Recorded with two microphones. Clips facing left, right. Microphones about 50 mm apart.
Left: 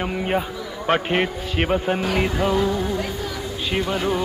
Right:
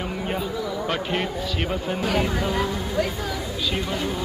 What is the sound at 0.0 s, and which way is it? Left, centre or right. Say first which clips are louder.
A man's voice: left 4 dB; left.